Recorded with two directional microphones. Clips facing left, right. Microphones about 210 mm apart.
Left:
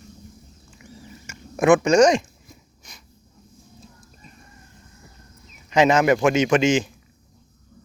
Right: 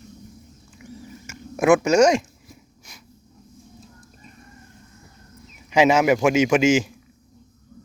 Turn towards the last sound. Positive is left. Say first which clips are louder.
# right 1 dB
turn(degrees=-10)  # may be behind; listen again after turning